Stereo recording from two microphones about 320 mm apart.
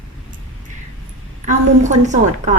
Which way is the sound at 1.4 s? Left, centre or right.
Right.